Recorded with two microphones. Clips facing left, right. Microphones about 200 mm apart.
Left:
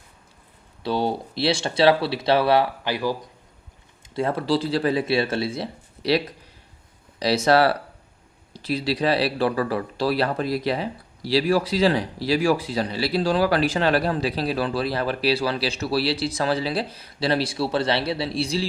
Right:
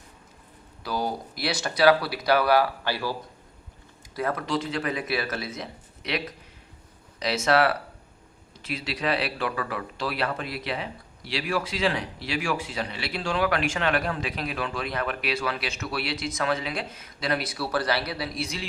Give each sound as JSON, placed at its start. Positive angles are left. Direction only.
{"t": 0.8, "sound": "speech", "side_deg": 30}
{"t": 4.1, "sound": "speech", "side_deg": 30}